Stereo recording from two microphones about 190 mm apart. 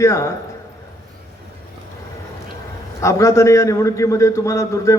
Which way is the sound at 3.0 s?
15° left (ahead or behind).